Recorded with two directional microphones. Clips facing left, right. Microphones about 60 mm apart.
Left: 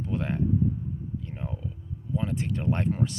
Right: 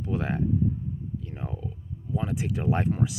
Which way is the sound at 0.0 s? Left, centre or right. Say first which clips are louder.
Right 1 dB; centre.